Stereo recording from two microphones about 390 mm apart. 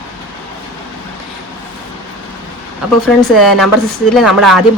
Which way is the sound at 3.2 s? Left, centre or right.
Centre.